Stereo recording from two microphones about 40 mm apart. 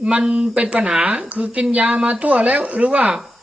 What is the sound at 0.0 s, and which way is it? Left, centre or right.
Speech, right.